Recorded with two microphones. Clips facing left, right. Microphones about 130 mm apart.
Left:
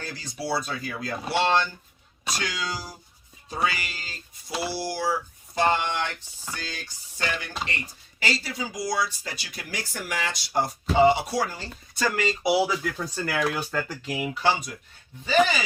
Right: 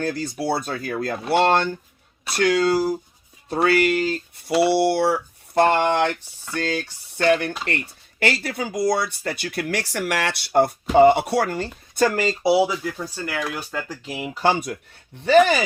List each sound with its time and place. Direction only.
0.0 s speech: 50° right (ahead or behind); by 12.6 s 30° right (ahead or behind)
12.6 s speech: 5° right (ahead or behind)
14.0 s speech: 25° right (ahead or behind)
14.3 s speech: 50° right (ahead or behind)